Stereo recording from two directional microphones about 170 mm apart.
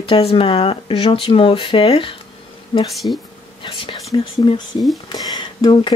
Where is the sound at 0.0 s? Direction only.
35° left (ahead or behind).